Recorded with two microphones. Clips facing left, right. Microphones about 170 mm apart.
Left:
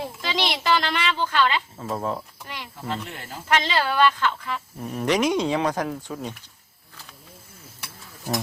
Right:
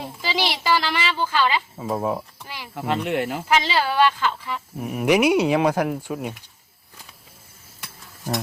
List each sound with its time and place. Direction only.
0.2 s speech: 5° right (ahead or behind)
2.7 s speech: 80° right
3.5 s speech: 5° right (ahead or behind)